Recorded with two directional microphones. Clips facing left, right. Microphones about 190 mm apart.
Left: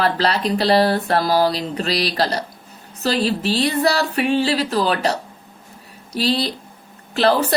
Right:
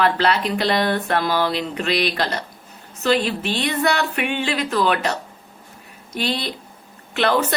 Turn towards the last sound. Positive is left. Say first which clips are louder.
# left 2 dB
turn(degrees=35)  # may be behind; listen again after turning